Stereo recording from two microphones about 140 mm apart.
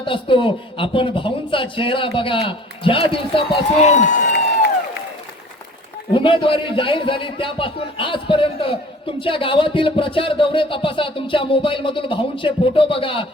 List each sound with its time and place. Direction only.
0.0 s a man's voice: 40° left (ahead or behind)
3.8 s a man's voice: 55° left (ahead or behind)
6.1 s a man's voice: 35° left (ahead or behind)